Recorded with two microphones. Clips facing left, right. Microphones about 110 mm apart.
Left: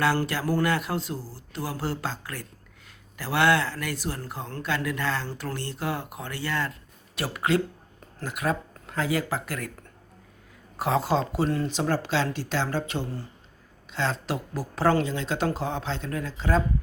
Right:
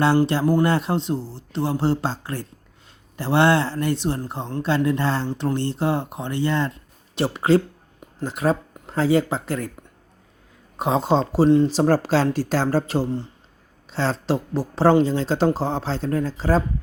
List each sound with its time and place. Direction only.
0.0 s speech: 25° right (ahead or behind)
10.8 s speech: 20° right (ahead or behind)
11.7 s speech: 40° right (ahead or behind)